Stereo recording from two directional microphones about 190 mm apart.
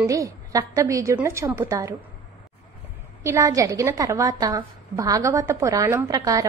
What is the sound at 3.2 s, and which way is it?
A woman's voice, 15° right (ahead or behind).